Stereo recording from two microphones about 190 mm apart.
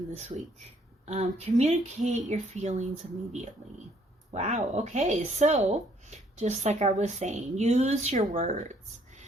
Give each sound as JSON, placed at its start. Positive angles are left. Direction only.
{"t": 0.2, "sound": "speech", "side_deg": -35}
{"t": 4.4, "sound": "speech", "side_deg": -35}